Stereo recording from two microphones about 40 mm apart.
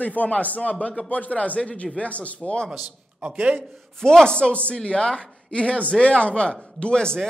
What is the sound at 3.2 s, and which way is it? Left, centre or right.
Speech, right.